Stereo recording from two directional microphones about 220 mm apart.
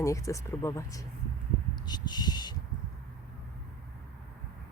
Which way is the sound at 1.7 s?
20° left (ahead or behind).